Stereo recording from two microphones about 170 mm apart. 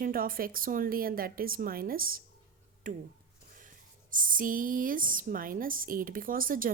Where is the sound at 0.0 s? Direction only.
60° right (ahead or behind).